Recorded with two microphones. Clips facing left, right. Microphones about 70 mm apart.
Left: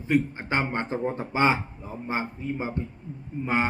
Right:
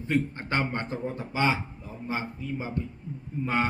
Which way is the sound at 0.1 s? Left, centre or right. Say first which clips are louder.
Left 3 dB; centre.